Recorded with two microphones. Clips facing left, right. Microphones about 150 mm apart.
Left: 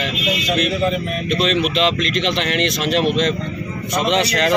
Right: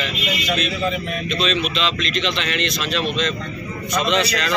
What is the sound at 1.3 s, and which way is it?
A man's voice, 70° left (ahead or behind).